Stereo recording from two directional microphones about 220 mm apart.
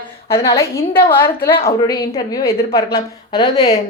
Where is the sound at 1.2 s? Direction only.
40° left (ahead or behind).